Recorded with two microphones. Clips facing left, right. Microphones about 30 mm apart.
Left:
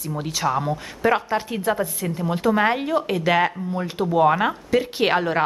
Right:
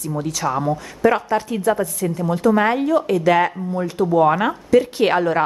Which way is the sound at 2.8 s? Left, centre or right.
Left.